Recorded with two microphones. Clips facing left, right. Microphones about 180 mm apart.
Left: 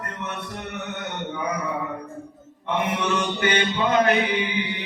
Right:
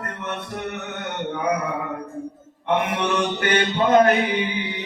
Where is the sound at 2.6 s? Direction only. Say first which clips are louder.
Right 2 dB; 55° right (ahead or behind).